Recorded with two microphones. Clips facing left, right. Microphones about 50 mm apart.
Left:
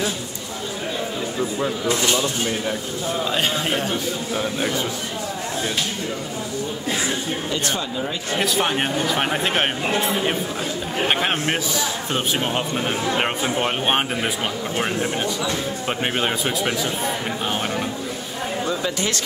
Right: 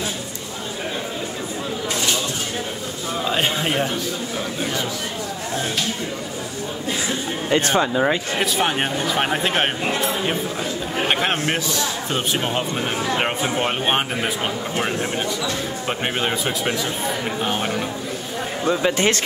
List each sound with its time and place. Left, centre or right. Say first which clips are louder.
3.3 s a man's voice: right 3 dB; centre
7.4 s speech: right 10 dB; right
7.8 s speech: right 7 dB; right
8.4 s speech: even; centre
11.1 s speech: even; centre
15.9 s speech: even; centre
18.7 s speech: right 9 dB; right